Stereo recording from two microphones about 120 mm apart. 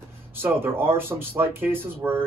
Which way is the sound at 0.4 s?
20° right (ahead or behind).